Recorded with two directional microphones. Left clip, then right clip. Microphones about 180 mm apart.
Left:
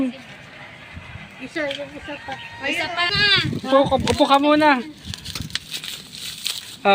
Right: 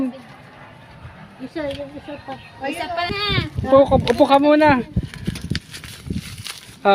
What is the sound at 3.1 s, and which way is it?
Speech, 55° right (ahead or behind).